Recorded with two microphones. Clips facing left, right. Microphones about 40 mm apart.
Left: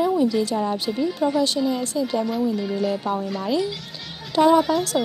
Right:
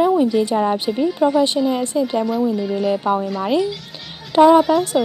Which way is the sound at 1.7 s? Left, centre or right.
Right.